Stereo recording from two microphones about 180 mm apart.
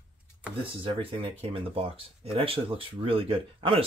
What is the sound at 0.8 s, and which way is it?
Speech, 30° right (ahead or behind).